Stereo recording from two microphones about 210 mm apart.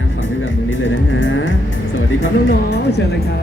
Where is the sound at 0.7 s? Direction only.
60° left (ahead or behind).